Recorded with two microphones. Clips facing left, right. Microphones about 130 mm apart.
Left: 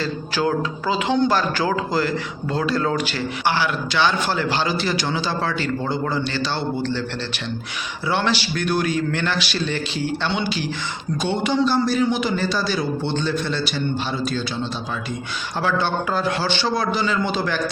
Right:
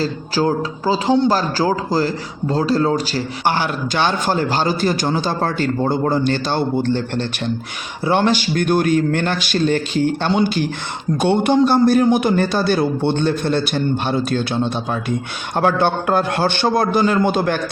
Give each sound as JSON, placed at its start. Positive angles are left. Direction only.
{"t": 0.0, "sound": "speech", "side_deg": -35}
{"t": 8.0, "sound": "speech", "side_deg": -45}